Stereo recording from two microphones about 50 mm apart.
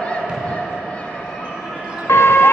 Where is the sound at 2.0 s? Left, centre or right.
Left.